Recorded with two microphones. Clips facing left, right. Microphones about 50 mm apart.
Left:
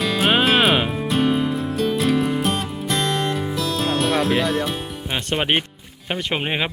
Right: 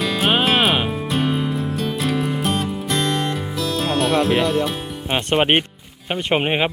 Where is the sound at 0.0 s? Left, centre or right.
Centre.